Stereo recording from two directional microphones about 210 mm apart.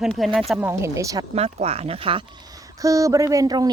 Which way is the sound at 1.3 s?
30° right (ahead or behind).